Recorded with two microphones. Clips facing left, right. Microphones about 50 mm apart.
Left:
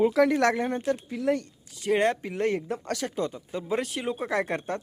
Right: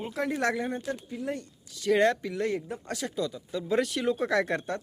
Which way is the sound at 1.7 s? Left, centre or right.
Left.